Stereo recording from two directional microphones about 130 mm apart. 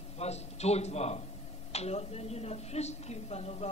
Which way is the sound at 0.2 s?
55° left (ahead or behind).